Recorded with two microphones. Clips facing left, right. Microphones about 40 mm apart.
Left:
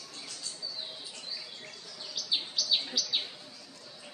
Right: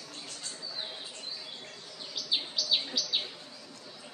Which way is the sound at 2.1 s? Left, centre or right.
Centre.